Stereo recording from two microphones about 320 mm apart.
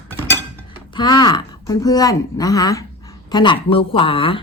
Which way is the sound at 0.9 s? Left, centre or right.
Centre.